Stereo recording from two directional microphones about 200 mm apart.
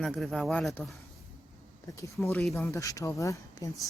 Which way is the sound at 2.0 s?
15° left (ahead or behind).